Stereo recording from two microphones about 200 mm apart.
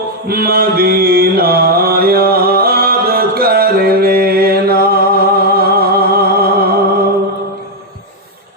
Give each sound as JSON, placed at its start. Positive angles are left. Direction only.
{"t": 0.3, "sound": "mantra", "side_deg": -50}